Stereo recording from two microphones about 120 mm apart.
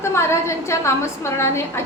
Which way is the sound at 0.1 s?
25° left (ahead or behind).